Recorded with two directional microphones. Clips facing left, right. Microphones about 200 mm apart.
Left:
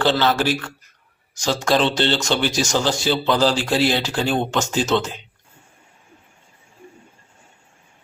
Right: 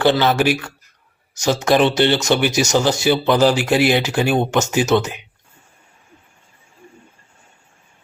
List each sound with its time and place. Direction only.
0.0 s speech: 15° right (ahead or behind)